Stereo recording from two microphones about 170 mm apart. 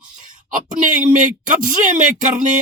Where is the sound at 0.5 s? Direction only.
50° right (ahead or behind).